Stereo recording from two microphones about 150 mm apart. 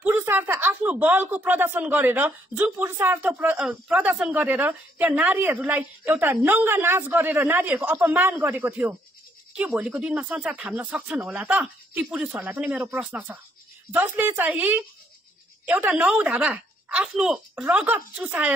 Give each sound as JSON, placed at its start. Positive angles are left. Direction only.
{"t": 0.0, "sound": "speech", "side_deg": -15}